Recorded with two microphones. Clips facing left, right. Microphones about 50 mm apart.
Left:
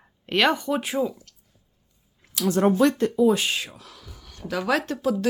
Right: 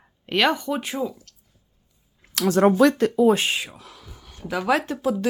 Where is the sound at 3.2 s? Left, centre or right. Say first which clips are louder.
Right 2 dB; right.